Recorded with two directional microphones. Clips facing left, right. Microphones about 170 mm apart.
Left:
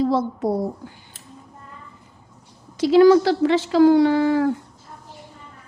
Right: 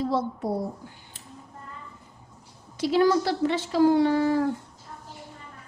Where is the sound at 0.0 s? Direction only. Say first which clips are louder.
Left 6 dB; 90° left.